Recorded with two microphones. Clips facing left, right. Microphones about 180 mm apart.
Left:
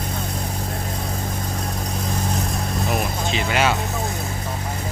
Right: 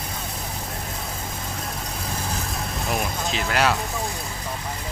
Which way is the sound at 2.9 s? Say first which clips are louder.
Left 1 dB; centre (ahead or behind).